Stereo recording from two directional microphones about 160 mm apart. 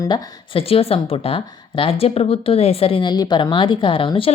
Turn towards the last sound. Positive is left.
turn(degrees=35)  # may be behind; listen again after turning